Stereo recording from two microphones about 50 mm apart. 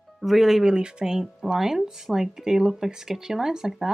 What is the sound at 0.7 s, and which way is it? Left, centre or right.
Speech, centre.